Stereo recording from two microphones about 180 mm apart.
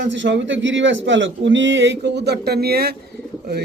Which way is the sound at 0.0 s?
85° right.